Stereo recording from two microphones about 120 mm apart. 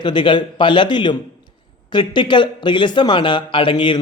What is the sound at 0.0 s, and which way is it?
Speech, 40° left (ahead or behind).